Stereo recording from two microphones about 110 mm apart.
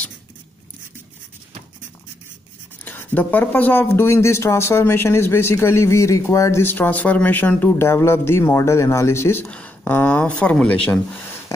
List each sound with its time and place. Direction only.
2.8 s speech: 15° left (ahead or behind)